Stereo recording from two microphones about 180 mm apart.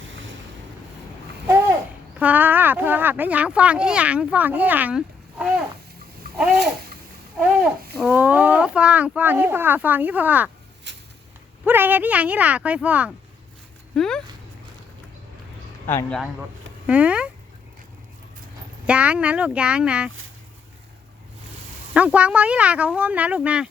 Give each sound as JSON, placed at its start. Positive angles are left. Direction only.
{"t": 2.1, "sound": "speech", "side_deg": -10}
{"t": 7.3, "sound": "a sound", "side_deg": -5}
{"t": 7.9, "sound": "speech", "side_deg": -5}
{"t": 10.9, "sound": "a sound", "side_deg": -75}
{"t": 11.6, "sound": "speech", "side_deg": -10}
{"t": 13.9, "sound": "speech", "side_deg": 5}
{"t": 15.9, "sound": "speech", "side_deg": 10}
{"t": 18.9, "sound": "speech", "side_deg": -5}
{"t": 21.9, "sound": "speech", "side_deg": -5}